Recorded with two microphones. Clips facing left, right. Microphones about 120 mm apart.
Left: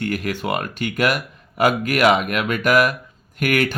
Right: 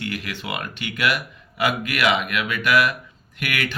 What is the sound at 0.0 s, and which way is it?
Speech, 45° left (ahead or behind).